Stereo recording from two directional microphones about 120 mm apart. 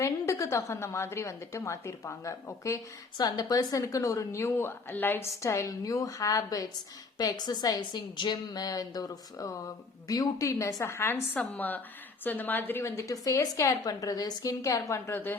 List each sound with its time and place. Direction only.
0.0 s a woman's voice: 25° left (ahead or behind)